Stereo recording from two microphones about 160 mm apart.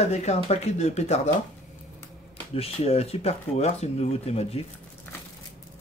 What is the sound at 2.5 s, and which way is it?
Speech, 40° left (ahead or behind).